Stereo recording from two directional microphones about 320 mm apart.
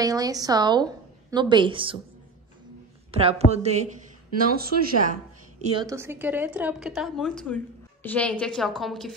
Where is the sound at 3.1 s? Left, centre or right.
Centre.